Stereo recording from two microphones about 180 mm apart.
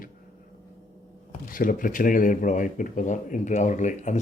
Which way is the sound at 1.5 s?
50° left (ahead or behind).